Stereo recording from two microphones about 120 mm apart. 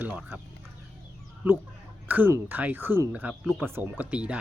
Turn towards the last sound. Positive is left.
turn(degrees=-10)  # may be behind; listen again after turning